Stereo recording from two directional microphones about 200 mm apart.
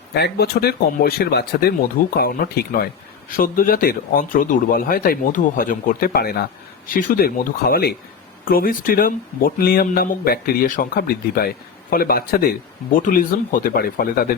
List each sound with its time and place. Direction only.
0.1 s speech: 55° left (ahead or behind)